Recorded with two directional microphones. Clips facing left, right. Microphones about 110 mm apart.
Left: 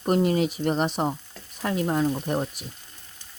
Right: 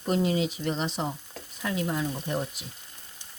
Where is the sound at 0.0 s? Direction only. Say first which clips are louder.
Left 4 dB; 50° left (ahead or behind).